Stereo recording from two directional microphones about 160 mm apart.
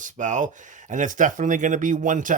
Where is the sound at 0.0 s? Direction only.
50° right (ahead or behind).